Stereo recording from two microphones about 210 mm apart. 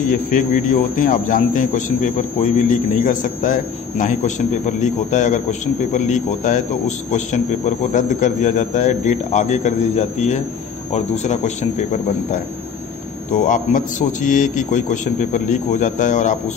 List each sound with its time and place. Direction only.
0.1 s a man's voice: 40° left (ahead or behind)
13.3 s a man's voice: 40° left (ahead or behind)